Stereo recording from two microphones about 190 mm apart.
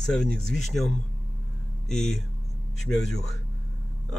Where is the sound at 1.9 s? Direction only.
Centre (ahead or behind).